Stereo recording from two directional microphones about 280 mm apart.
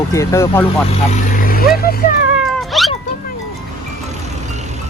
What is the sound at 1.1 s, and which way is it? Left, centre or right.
Speech, left.